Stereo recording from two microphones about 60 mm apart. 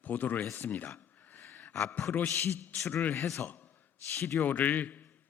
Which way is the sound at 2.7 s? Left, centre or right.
Left.